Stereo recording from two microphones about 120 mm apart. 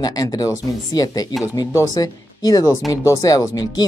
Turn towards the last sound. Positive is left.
turn(degrees=30)  # may be behind; listen again after turning